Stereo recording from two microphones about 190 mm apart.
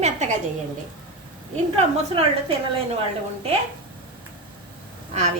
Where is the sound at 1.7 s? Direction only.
30° right (ahead or behind).